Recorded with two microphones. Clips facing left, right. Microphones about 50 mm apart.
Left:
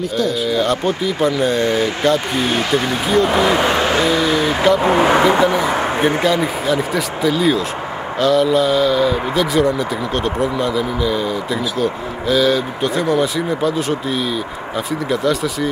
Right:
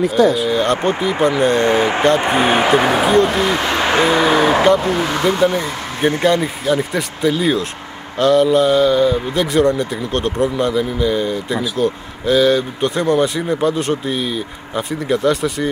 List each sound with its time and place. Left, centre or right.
0.1 s speech: centre
1.6 s speech: right
3.1 s speech: centre
3.9 s speech: right
4.7 s speech: left
5.4 s speech: centre
7.2 s speech: centre
10.7 s speech: centre
14.0 s speech: centre